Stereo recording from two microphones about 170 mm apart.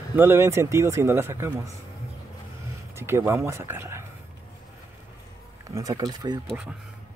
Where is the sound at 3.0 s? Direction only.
15° right (ahead or behind).